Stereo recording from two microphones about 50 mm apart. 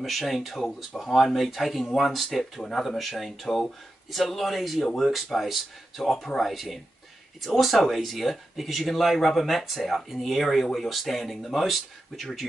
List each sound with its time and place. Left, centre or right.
0.0 s speech: centre